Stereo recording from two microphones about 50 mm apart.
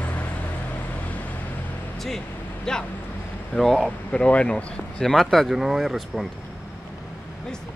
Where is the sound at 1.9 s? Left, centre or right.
Centre.